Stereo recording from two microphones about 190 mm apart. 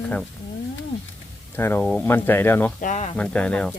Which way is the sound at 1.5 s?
10° left (ahead or behind).